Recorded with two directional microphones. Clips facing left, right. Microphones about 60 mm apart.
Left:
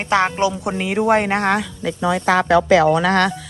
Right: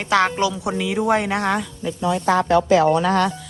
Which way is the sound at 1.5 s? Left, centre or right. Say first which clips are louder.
Left 3 dB; left.